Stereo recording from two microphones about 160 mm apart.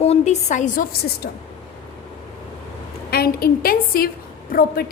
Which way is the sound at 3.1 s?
75° left (ahead or behind).